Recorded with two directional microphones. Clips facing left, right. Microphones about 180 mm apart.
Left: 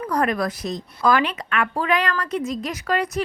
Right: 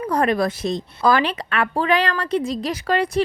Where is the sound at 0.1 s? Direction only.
25° right (ahead or behind).